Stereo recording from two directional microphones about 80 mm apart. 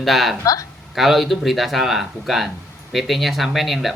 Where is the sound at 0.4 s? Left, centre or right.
Left.